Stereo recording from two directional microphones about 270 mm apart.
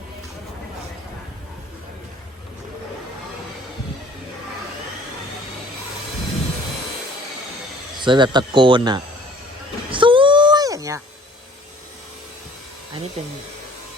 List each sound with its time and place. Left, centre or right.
8.0 s speech: centre
9.9 s a sound: centre
13.2 s speech: right